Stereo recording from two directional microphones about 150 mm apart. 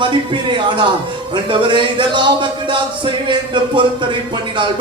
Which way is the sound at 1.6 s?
30° right (ahead or behind).